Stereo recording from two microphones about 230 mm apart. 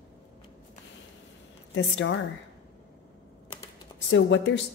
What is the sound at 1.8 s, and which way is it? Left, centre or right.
Speech, left.